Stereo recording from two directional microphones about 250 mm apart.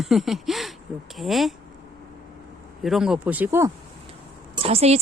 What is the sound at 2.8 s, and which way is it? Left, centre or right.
Speech, centre.